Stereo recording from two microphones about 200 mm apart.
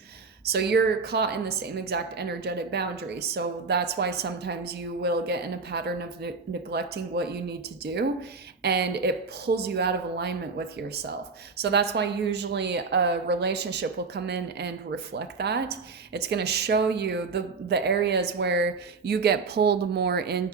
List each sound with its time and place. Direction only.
0.4 s a woman's voice: 55° right (ahead or behind)
8.6 s a woman's voice: 55° right (ahead or behind)